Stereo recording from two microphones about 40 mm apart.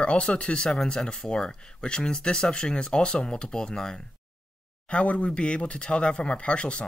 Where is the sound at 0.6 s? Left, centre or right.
Centre.